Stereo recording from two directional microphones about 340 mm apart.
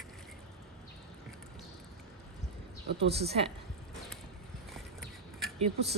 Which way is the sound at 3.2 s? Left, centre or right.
Centre.